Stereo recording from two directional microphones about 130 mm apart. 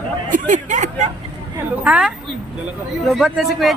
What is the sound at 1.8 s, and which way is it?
A woman's voice, 10° right (ahead or behind).